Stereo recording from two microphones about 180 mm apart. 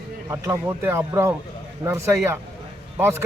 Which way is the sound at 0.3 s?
15° right (ahead or behind).